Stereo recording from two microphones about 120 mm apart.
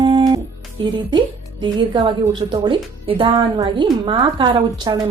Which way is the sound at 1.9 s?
40° right (ahead or behind).